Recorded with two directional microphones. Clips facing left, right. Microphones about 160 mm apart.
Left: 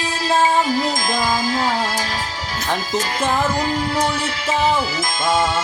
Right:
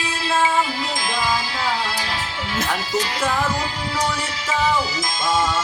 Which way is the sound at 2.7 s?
45° left (ahead or behind).